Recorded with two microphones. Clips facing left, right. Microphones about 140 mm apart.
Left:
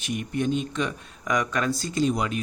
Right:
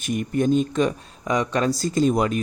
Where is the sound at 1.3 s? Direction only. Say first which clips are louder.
Right 4 dB; 30° right (ahead or behind); by 2.4 s 45° right (ahead or behind).